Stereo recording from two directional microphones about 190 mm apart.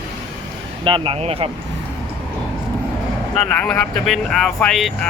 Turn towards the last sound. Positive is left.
turn(degrees=0)  # may be behind; listen again after turning